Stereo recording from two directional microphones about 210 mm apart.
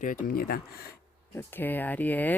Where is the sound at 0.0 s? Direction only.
40° left (ahead or behind).